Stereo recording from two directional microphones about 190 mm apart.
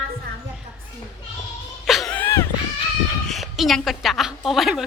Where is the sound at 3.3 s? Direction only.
Centre (ahead or behind).